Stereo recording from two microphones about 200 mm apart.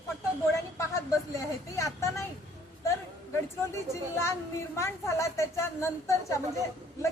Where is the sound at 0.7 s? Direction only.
15° left (ahead or behind).